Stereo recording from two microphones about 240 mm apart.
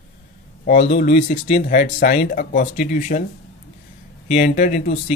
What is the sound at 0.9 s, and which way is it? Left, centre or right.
Speech, left.